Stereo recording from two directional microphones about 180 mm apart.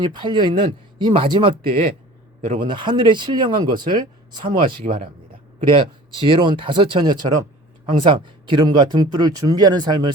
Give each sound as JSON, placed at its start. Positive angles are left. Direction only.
{"t": 0.0, "sound": "speech", "side_deg": -25}
{"t": 4.4, "sound": "speech", "side_deg": -50}
{"t": 5.7, "sound": "speech", "side_deg": -30}